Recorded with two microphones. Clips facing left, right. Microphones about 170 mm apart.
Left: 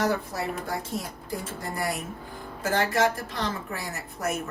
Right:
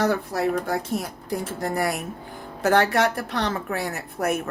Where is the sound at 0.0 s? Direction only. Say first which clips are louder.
Right 5 dB; 65° right (ahead or behind).